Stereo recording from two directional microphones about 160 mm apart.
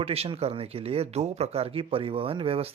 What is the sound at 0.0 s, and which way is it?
Speech, 40° right (ahead or behind).